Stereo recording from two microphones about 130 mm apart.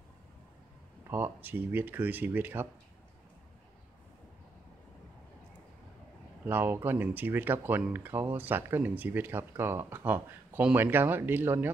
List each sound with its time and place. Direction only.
1.1 s speech: 15° right (ahead or behind)
6.4 s speech: 15° right (ahead or behind)